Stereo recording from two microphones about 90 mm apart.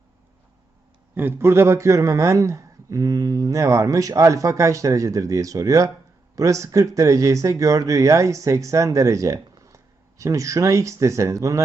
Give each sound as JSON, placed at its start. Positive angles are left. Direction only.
{"t": 1.1, "sound": "speech", "side_deg": -25}